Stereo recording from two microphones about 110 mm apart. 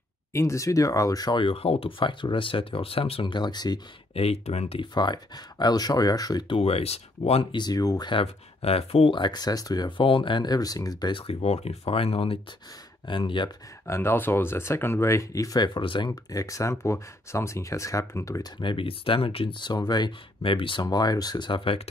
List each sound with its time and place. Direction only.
0.3 s speech: 25° left (ahead or behind)
4.1 s speech: 70° left (ahead or behind)
4.9 s speech: 40° left (ahead or behind)
6.4 s speech: 55° left (ahead or behind)
7.5 s speech: 35° left (ahead or behind)
8.1 s speech: 60° left (ahead or behind)
9.1 s speech: 40° left (ahead or behind); by 12.4 s 60° left (ahead or behind)
13.0 s speech: 50° left (ahead or behind)
13.8 s speech: 25° left (ahead or behind); by 16.1 s 50° left (ahead or behind)
16.1 s speech: 30° left (ahead or behind)
18.6 s speech: 50° left (ahead or behind)